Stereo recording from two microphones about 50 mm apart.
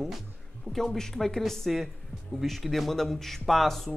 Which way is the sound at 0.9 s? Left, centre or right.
Centre.